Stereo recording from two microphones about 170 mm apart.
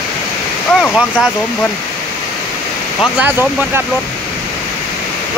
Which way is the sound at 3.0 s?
10° right (ahead or behind).